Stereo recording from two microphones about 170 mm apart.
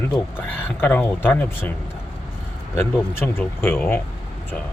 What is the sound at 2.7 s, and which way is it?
Speech, 15° left (ahead or behind).